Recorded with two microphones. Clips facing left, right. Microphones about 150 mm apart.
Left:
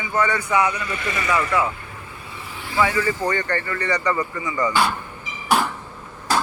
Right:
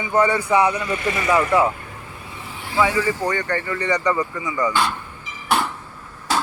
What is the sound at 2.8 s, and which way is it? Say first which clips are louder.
Speech: right 1 dB; 10° right (ahead or behind).